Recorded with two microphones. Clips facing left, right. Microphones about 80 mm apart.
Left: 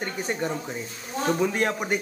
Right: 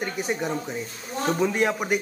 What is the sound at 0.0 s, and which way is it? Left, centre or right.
A man's voice, centre.